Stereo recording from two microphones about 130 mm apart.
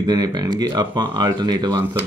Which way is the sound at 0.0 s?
35° right (ahead or behind).